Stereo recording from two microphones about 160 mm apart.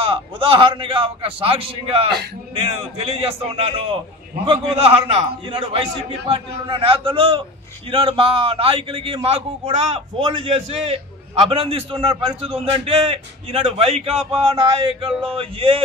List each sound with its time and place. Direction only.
0.0 s a man's voice: 35° right (ahead or behind)